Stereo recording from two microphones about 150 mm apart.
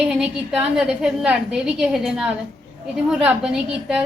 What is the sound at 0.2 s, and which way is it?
A woman's voice, 5° right (ahead or behind).